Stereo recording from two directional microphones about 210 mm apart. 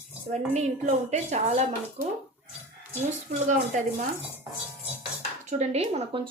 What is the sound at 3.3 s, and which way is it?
Speech, 35° right (ahead or behind).